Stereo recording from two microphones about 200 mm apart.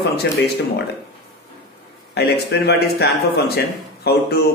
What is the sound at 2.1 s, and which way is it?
A man's voice, 55° left (ahead or behind).